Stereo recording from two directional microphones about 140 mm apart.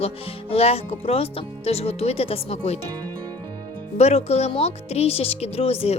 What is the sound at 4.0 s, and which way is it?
Speech, 50° left (ahead or behind).